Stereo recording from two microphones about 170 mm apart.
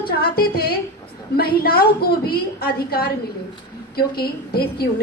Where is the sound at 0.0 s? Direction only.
65° left (ahead or behind).